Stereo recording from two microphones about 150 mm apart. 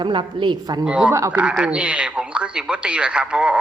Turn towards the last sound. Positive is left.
turn(degrees=-5)  # may be behind; listen again after turning